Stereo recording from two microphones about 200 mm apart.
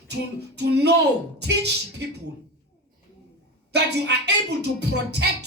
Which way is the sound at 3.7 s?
55° right (ahead or behind).